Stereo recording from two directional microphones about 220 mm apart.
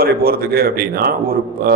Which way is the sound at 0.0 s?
45° right (ahead or behind).